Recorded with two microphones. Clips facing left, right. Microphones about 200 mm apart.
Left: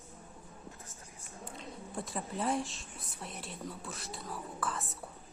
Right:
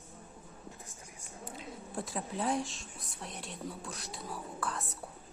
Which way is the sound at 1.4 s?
Centre (ahead or behind).